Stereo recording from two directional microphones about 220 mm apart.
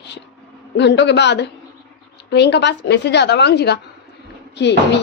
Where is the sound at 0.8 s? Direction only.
50° left (ahead or behind).